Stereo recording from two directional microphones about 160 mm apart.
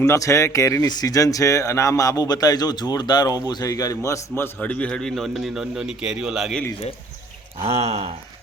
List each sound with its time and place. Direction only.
0.0 s a man's voice: 20° left (ahead or behind); by 6.7 s centre (ahead or behind)
7.6 s speech: 40° right (ahead or behind)